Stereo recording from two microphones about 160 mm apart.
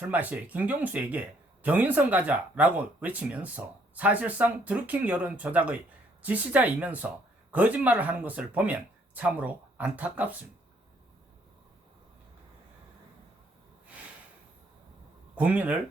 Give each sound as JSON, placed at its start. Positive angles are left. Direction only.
{"t": 0.0, "sound": "speech", "side_deg": -10}
{"t": 15.4, "sound": "speech", "side_deg": -10}